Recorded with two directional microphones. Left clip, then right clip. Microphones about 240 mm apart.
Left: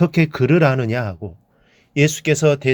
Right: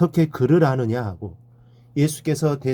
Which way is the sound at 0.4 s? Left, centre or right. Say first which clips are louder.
Left 2 dB; left.